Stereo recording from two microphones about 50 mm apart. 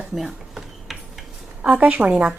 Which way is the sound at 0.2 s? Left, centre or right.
Centre.